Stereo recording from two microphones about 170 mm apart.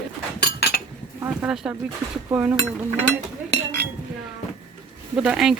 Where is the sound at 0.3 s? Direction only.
70° left (ahead or behind).